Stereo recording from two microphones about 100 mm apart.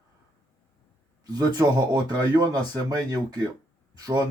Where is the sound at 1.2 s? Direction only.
40° right (ahead or behind).